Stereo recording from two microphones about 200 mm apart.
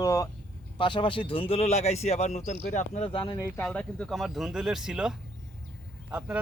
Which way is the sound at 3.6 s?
5° left (ahead or behind).